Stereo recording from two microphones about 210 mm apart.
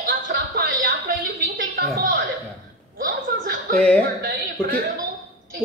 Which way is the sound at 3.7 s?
5° left (ahead or behind).